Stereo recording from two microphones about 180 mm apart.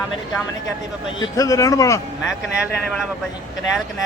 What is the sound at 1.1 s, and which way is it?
Speech, 20° left (ahead or behind).